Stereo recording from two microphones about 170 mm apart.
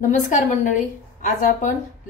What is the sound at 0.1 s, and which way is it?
A woman's voice, 45° left (ahead or behind).